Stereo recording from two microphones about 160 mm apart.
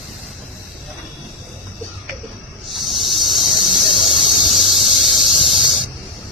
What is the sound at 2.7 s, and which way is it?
Squeal, centre (ahead or behind).